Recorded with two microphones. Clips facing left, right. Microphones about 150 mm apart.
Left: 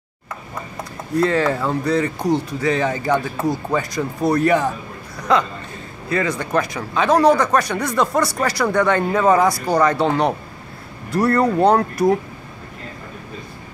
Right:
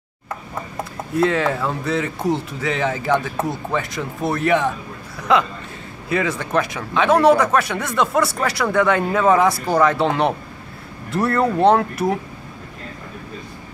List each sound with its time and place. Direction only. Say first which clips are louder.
1.1 s speech: left 1 dB; centre (ahead or behind)
6.0 s speech: even; 5° right (ahead or behind)